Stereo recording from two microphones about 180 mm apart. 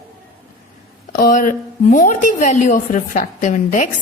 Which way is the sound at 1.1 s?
50° left (ahead or behind).